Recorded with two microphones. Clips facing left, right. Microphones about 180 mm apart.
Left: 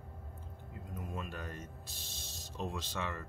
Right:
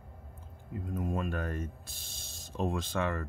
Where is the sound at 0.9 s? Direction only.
50° right (ahead or behind).